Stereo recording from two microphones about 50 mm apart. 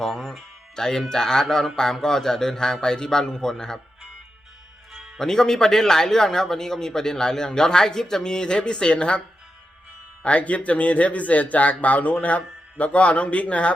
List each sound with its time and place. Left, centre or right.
0.0 s speech: centre
5.1 s speech: centre
10.2 s speech: left